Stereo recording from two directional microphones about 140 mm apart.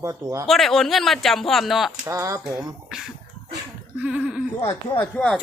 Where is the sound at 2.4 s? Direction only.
5° right (ahead or behind).